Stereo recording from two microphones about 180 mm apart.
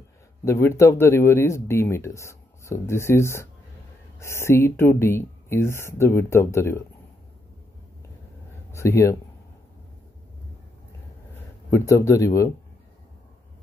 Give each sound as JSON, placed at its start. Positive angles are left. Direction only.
{"t": 0.5, "sound": "speech", "side_deg": 15}
{"t": 8.7, "sound": "speech", "side_deg": 15}
{"t": 11.7, "sound": "speech", "side_deg": 15}